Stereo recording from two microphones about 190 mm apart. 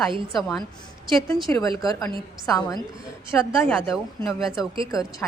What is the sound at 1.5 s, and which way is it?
A woman's voice, 15° left (ahead or behind).